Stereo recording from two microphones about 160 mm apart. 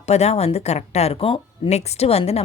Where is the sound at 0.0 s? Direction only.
40° left (ahead or behind).